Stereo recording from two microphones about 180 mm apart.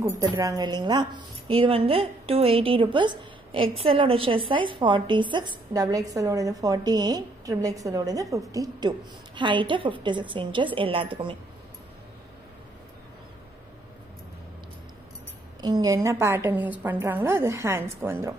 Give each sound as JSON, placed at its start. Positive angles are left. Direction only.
{"t": 0.2, "sound": "a woman's voice", "side_deg": -20}
{"t": 15.6, "sound": "a woman's voice", "side_deg": -20}